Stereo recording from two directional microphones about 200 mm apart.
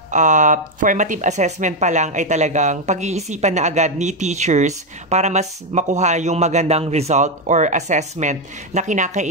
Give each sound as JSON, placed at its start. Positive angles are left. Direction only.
{"t": 0.1, "sound": "speech", "side_deg": -40}